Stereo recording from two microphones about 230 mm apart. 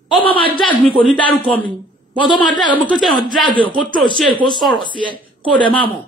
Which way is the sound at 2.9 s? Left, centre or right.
Centre.